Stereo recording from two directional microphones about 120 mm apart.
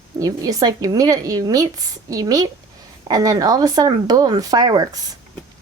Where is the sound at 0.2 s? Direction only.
30° right (ahead or behind).